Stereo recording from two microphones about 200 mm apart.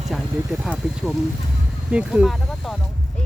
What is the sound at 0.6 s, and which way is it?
Speech, centre (ahead or behind).